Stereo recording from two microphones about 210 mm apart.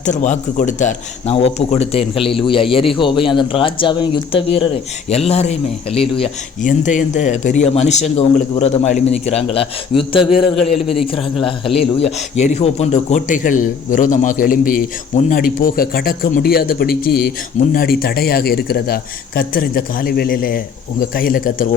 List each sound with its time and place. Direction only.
0.0 s a man's voice: 35° left (ahead or behind)